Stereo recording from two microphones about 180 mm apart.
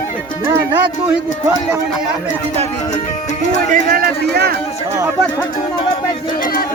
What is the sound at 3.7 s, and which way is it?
Speech, 55° right (ahead or behind).